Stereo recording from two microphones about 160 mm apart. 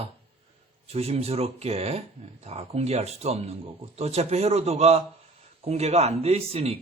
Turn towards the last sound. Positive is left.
turn(degrees=-40)  # may be behind; listen again after turning